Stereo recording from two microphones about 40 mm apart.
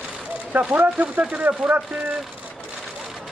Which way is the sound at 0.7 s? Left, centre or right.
Right.